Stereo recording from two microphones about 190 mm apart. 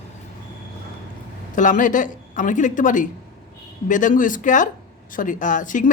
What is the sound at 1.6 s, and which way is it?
Speech, 45° left (ahead or behind).